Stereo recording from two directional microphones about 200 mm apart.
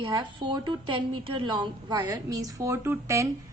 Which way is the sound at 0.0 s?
20° right (ahead or behind).